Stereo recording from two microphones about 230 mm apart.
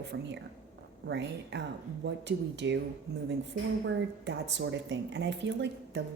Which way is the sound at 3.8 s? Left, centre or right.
Right.